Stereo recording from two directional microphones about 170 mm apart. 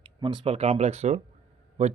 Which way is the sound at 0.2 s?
30° right (ahead or behind).